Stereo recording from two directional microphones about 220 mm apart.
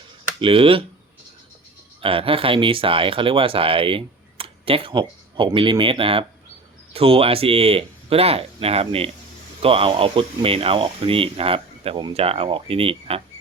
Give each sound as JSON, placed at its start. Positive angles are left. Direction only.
{"t": 0.3, "sound": "speech", "side_deg": -25}
{"t": 2.0, "sound": "speech", "side_deg": -25}